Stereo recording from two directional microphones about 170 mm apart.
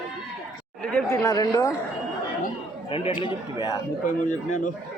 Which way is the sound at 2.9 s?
30° left (ahead or behind).